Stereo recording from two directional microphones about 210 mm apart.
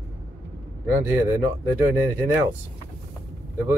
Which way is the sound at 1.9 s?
10° right (ahead or behind).